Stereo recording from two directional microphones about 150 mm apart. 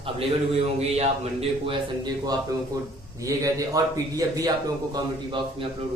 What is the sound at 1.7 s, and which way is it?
Speech, 30° right (ahead or behind).